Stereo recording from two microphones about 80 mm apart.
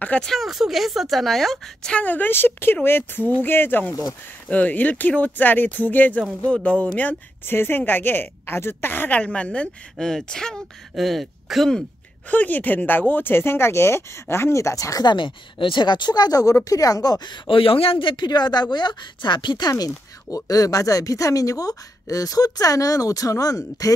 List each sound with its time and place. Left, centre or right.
0.2 s speech: centre
12.3 s speech: left
15.0 s speech: left
19.7 s speech: left